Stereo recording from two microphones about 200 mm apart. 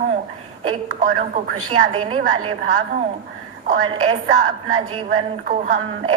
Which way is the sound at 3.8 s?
30° right (ahead or behind).